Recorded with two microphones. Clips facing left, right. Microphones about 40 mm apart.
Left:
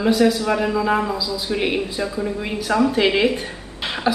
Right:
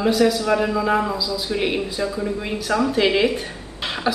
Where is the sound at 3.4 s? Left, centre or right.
Centre.